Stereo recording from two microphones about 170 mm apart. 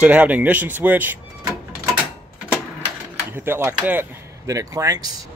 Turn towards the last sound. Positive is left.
turn(degrees=-20)  # may be behind; listen again after turning